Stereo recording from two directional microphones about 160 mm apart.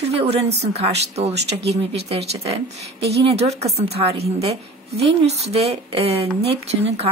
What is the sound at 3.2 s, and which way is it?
A woman's voice, 40° right (ahead or behind).